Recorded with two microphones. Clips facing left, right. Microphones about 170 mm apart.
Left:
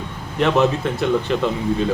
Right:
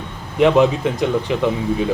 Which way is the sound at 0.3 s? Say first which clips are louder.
Right 4 dB; 15° right (ahead or behind).